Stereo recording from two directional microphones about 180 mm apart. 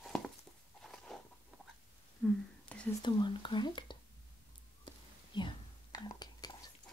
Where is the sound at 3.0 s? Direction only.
25° left (ahead or behind).